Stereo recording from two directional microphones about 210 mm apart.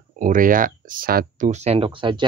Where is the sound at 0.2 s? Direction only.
40° right (ahead or behind).